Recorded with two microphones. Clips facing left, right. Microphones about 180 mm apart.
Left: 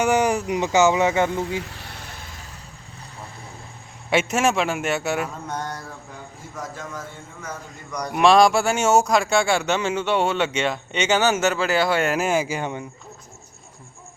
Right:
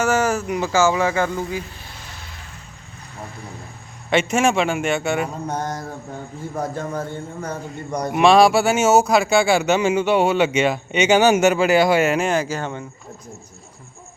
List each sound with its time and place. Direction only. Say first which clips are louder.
0.0 s speech: even; 15° left (ahead or behind)
1.7 s vehicle: left 1 dB; 65° left (ahead or behind)
4.1 s a man's voice: right 2 dB; 5° left (ahead or behind)
5.3 s mantra: right 4 dB; 45° right (ahead or behind)
7.4 s a man's voice: right 7 dB; 30° right (ahead or behind)
8.1 s speech: right 2 dB; centre (ahead or behind)
12.1 s speech: right 2 dB; 5° left (ahead or behind)